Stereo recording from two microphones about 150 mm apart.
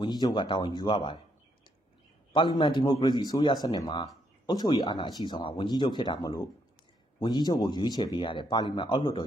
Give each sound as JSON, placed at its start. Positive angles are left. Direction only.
{"t": 0.0, "sound": "speech", "side_deg": 30}
{"t": 2.3, "sound": "a man's voice", "side_deg": 30}